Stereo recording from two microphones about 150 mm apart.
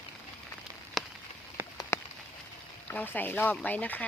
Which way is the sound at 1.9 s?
15° left (ahead or behind).